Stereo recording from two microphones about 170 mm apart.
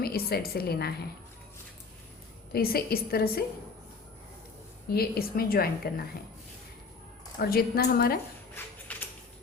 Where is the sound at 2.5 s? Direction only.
65° left (ahead or behind).